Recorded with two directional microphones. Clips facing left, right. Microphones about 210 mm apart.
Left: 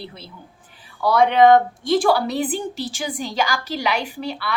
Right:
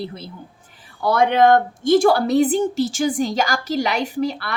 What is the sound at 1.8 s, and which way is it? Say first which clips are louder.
A woman's voice: right 6 dB; 45° right (ahead or behind).